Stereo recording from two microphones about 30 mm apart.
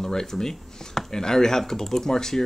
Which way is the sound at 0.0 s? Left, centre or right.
Centre.